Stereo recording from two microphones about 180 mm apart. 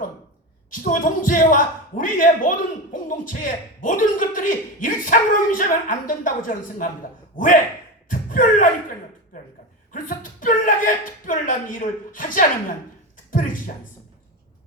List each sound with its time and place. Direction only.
0.7 s speech: 50° left (ahead or behind)
8.0 s a sound: 50° left (ahead or behind)
9.9 s speech: 45° left (ahead or behind)